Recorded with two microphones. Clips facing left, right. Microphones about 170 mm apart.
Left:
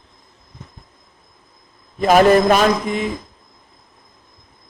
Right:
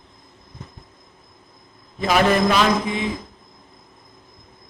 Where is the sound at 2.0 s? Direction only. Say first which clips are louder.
Left 6 dB; 45° left (ahead or behind).